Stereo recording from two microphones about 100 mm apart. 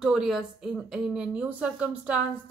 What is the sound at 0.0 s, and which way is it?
Speech, 5° right (ahead or behind).